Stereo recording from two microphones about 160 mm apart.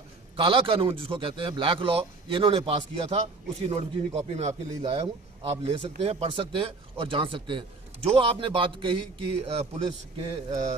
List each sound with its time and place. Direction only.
0.4 s speech: 35° right (ahead or behind)